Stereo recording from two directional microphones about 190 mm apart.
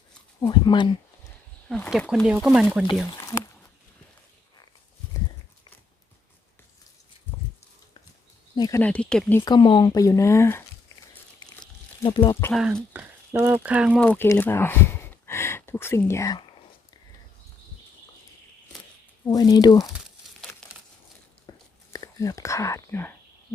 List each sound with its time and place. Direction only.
0.3 s speech: 20° left (ahead or behind)
1.7 s speech: 5° left (ahead or behind)
3.1 s a sound: 15° left (ahead or behind)
8.5 s speech: 20° left (ahead or behind)
8.8 s speech: 5° left (ahead or behind)
9.4 s speech: 25° left (ahead or behind)
11.4 s crumpling: 25° left (ahead or behind)
12.7 s speech: 10° right (ahead or behind)
14.0 s speech: 10° left (ahead or behind)
19.2 s speech: 20° left (ahead or behind)
21.5 s a sound: 20° left (ahead or behind)
21.9 s speech: 15° left (ahead or behind)